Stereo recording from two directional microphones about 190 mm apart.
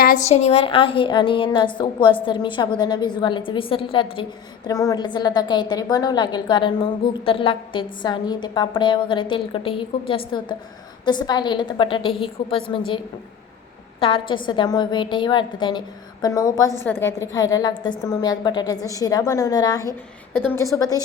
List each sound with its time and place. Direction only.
0.3 s a woman's voice: 35° left (ahead or behind)
14.0 s a woman's voice: 25° left (ahead or behind)